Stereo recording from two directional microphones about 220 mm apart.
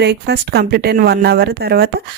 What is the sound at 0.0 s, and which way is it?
Speech, 50° right (ahead or behind).